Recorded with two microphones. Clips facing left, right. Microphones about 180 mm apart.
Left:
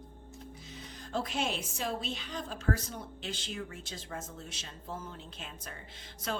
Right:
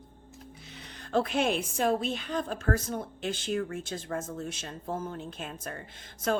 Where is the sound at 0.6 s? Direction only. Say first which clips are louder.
Left 1 dB; 70° right (ahead or behind).